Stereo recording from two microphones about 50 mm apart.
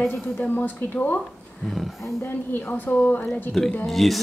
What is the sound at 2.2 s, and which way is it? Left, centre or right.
Speech, left.